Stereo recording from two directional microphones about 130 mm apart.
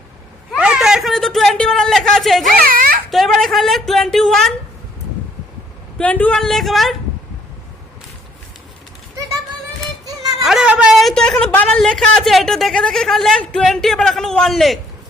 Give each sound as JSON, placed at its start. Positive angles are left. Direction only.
{"t": 0.5, "sound": "a sound", "side_deg": -5}
{"t": 2.4, "sound": "giggle", "side_deg": -90}
{"t": 3.1, "sound": "a man's voice", "side_deg": 0}
{"t": 6.0, "sound": "a man's voice", "side_deg": 10}
{"t": 10.4, "sound": "a man's voice", "side_deg": -5}